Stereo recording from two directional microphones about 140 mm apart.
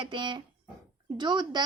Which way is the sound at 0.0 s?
35° right (ahead or behind).